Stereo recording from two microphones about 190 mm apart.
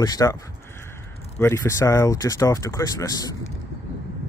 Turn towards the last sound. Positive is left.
turn(degrees=20)  # may be behind; listen again after turning